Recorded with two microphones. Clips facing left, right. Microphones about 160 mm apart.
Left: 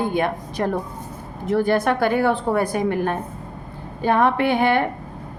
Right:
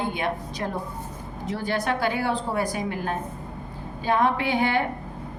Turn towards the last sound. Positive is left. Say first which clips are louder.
# left 5 dB
turn(degrees=60)  # may be behind; listen again after turning